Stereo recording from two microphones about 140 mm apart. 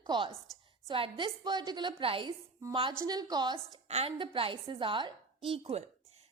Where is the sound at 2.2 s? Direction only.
25° right (ahead or behind).